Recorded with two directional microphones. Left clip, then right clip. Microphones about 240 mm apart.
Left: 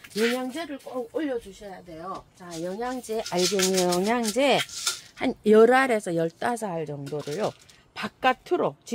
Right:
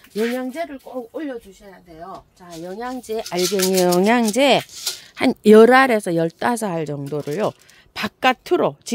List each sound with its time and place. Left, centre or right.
0.1 s speech: right
2.6 s a woman's voice: right